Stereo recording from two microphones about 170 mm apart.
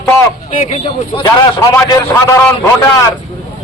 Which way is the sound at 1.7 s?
20° left (ahead or behind).